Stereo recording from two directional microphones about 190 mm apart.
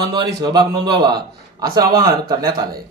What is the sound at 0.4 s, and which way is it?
A man's voice, 20° right (ahead or behind).